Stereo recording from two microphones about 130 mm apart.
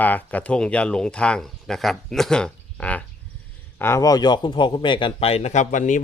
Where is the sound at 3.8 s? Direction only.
20° left (ahead or behind); by 6.0 s 75° left (ahead or behind).